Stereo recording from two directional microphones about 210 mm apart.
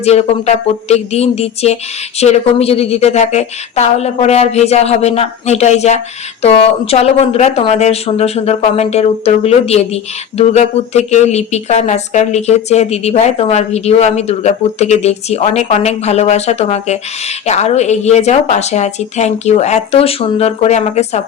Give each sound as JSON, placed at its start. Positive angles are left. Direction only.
{"t": 0.0, "sound": "speech", "side_deg": 30}